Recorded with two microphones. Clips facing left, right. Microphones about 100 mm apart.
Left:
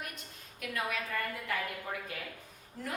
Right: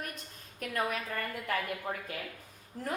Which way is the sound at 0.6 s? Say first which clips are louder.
Right 3 dB; 40° right (ahead or behind).